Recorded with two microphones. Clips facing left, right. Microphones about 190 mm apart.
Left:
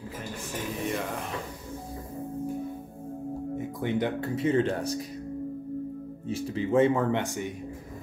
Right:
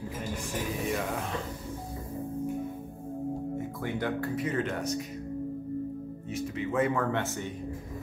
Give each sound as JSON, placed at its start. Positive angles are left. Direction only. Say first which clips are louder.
{"t": 0.8, "sound": "a sound", "louder": "left 1 dB", "side_deg": 0}
{"t": 3.5, "sound": "speech", "louder": "left 4 dB", "side_deg": 20}
{"t": 6.2, "sound": "speech", "louder": "left 4 dB", "side_deg": 30}